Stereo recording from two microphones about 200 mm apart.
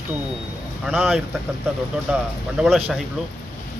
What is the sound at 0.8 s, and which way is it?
A man's voice, 5° right (ahead or behind).